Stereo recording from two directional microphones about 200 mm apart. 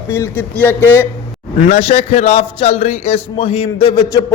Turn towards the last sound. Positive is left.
turn(degrees=20)  # may be behind; listen again after turning